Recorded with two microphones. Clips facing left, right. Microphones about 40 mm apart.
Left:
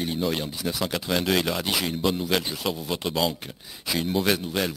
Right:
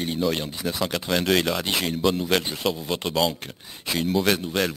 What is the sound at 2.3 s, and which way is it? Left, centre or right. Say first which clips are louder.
Speech: right 2 dB; centre.